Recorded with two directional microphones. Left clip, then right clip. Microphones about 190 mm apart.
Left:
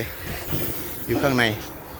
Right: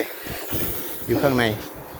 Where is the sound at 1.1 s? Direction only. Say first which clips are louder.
Right 1 dB; 15° right (ahead or behind).